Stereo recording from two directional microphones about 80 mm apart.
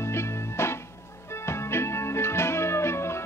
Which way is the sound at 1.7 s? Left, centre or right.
Left.